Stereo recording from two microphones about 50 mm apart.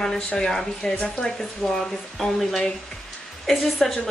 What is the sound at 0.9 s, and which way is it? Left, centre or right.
Speech, left.